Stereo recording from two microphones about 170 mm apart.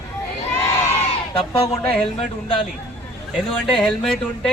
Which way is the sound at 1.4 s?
35° left (ahead or behind).